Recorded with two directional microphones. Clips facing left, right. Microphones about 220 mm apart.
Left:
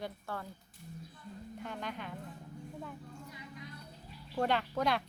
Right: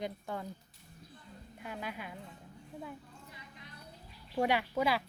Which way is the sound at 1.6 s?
5° right (ahead or behind).